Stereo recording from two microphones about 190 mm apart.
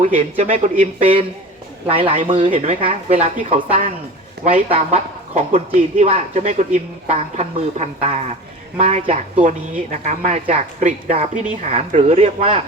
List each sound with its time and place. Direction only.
0.0 s speech: 35° right (ahead or behind)